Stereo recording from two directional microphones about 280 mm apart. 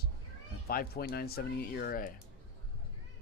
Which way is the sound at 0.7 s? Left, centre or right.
Left.